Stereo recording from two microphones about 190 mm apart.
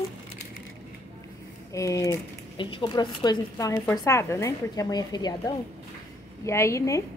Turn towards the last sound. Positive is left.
turn(degrees=15)  # may be behind; listen again after turning